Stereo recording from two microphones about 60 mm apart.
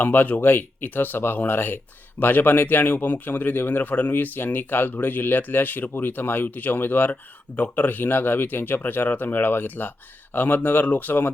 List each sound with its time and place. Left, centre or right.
0.0 s speech: left